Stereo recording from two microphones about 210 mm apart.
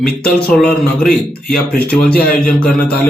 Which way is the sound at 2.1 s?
45° left (ahead or behind).